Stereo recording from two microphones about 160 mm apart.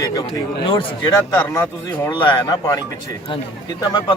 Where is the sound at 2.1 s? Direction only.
30° left (ahead or behind).